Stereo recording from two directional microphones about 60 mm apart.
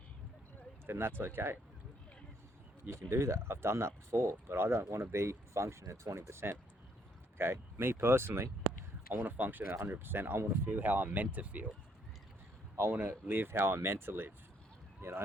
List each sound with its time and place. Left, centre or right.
0.9 s speech: right
3.1 s speech: right
9.1 s speech: right
13.1 s speech: right